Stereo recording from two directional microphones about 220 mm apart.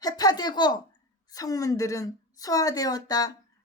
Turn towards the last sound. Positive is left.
turn(degrees=15)  # may be behind; listen again after turning